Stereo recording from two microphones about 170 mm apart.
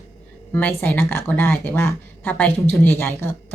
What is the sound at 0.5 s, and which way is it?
A woman's voice, 10° left (ahead or behind).